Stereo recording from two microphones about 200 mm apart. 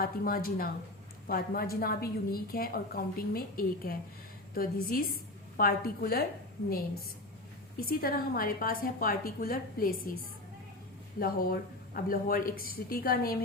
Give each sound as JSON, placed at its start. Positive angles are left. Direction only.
{"t": 0.0, "sound": "a woman's voice", "side_deg": 45}
{"t": 7.9, "sound": "a woman's voice", "side_deg": 45}
{"t": 11.2, "sound": "a woman's voice", "side_deg": 45}